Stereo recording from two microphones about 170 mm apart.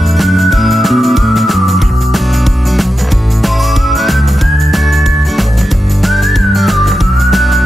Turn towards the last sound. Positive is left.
turn(degrees=0)  # may be behind; listen again after turning